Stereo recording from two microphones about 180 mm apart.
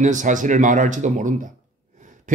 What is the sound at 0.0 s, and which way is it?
Speech, 45° right (ahead or behind).